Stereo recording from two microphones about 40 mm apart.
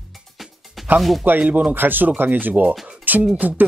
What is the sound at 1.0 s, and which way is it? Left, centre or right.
Speech, centre.